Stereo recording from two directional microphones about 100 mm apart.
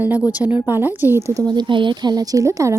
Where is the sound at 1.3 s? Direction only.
45° right (ahead or behind).